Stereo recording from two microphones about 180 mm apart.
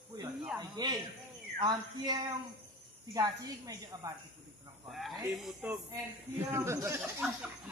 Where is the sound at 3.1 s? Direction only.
20° right (ahead or behind).